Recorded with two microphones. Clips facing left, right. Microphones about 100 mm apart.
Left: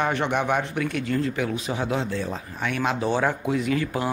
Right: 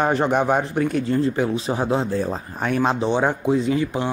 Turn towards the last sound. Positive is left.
turn(degrees=-25)  # may be behind; listen again after turning